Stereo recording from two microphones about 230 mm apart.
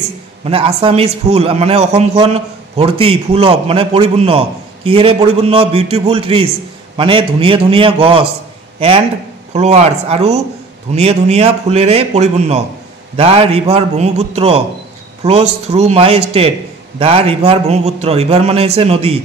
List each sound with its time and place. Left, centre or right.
0.5 s a man's voice: right